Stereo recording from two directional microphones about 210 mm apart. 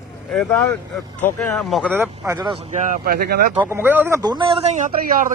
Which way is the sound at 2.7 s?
40° right (ahead or behind).